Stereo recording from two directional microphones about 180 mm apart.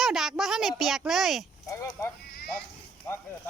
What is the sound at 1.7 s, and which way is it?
Speech, 20° left (ahead or behind).